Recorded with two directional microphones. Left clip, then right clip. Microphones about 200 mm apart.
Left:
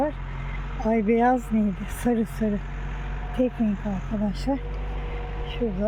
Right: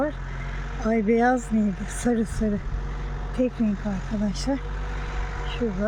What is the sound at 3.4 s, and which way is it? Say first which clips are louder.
Speech: even; 20° right (ahead or behind).